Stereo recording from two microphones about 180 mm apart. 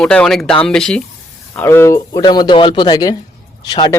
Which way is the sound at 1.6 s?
15° left (ahead or behind).